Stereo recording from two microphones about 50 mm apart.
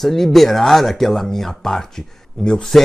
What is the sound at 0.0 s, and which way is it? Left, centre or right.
Speech, centre.